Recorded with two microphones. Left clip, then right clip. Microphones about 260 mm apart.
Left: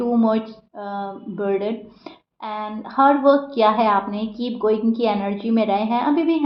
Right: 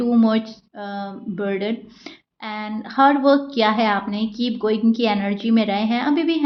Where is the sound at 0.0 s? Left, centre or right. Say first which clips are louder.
Even; right.